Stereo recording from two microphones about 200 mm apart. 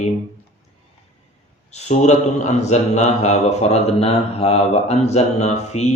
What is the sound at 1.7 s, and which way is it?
A man's voice, 35° left (ahead or behind).